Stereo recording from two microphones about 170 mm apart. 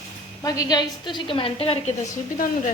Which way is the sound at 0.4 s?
20° left (ahead or behind).